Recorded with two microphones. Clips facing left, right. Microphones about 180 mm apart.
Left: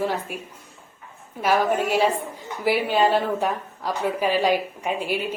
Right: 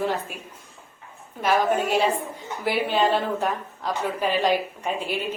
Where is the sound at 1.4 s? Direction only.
5° left (ahead or behind).